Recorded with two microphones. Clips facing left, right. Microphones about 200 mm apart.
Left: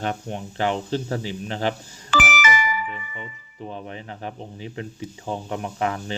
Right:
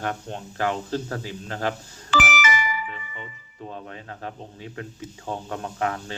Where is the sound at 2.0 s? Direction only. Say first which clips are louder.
Left 1 dB; 50° left (ahead or behind).